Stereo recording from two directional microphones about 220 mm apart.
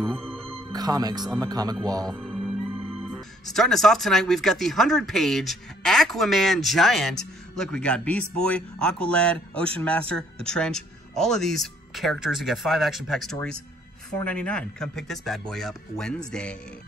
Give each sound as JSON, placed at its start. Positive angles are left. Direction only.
{"t": 0.0, "sound": "music", "side_deg": 5}
{"t": 0.7, "sound": "speech", "side_deg": -15}
{"t": 2.1, "sound": "music", "side_deg": 0}
{"t": 3.0, "sound": "speech", "side_deg": 0}